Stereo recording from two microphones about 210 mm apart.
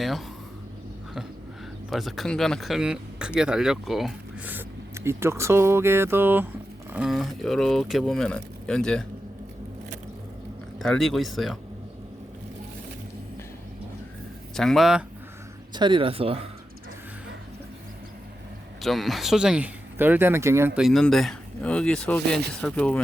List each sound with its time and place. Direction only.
1.9 s speech: centre (ahead or behind)
10.8 s speech: centre (ahead or behind)
14.5 s speech: centre (ahead or behind)
15.7 s speech: 20° right (ahead or behind)
18.8 s speech: centre (ahead or behind)